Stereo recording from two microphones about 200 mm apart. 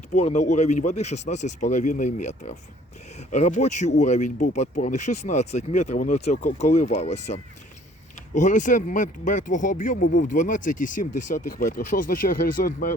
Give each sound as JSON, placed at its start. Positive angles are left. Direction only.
{"t": 0.1, "sound": "speech", "side_deg": 35}
{"t": 8.4, "sound": "speech", "side_deg": 40}